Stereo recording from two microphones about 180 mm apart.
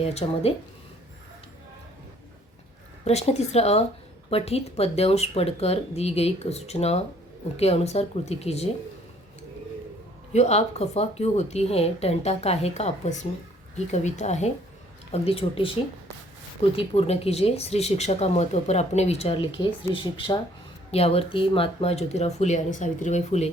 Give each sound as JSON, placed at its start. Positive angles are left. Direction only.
{"t": 0.0, "sound": "speech", "side_deg": 35}
{"t": 3.0, "sound": "speech", "side_deg": 35}
{"t": 10.3, "sound": "speech", "side_deg": 35}
{"t": 16.7, "sound": "speech", "side_deg": 35}